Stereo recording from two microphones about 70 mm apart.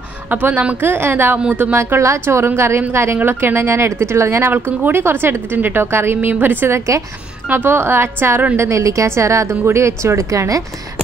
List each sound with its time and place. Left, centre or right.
0.3 s speech: right
1.8 s speech: right
8.5 s a woman's voice: right